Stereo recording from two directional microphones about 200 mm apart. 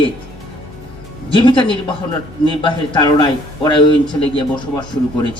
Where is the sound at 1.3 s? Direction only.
25° left (ahead or behind).